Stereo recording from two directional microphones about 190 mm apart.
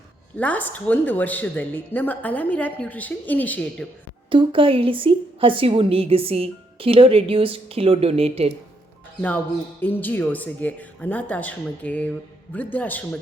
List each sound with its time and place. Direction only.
0.3 s a woman's voice: 10° left (ahead or behind)
4.3 s a woman's voice: 25° right (ahead or behind)
9.8 s a woman's voice: 10° left (ahead or behind)